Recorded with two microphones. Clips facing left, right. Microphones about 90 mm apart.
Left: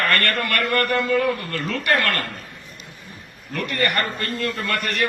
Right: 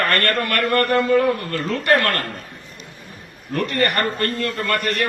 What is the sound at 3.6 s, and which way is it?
A man's voice, 45° right (ahead or behind).